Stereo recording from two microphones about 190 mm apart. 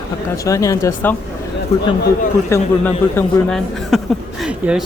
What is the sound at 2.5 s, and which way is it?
Speech, 15° left (ahead or behind).